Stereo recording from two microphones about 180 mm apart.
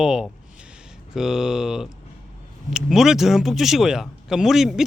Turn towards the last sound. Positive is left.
turn(degrees=0)  # may be behind; listen again after turning